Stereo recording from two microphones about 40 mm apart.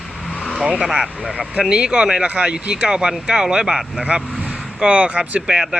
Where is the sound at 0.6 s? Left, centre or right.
Right.